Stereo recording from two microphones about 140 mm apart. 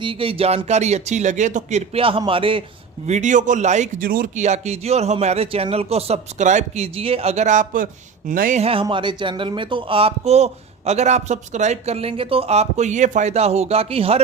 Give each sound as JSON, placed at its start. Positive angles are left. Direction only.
{"t": 0.0, "sound": "speech", "side_deg": -40}
{"t": 3.1, "sound": "speech", "side_deg": -60}
{"t": 4.4, "sound": "speech", "side_deg": -50}
{"t": 8.6, "sound": "speech", "side_deg": -40}